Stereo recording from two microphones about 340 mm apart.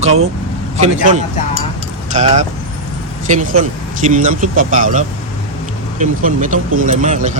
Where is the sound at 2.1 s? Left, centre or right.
Centre.